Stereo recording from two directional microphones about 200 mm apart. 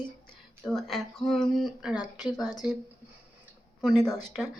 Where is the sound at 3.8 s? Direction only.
Centre (ahead or behind).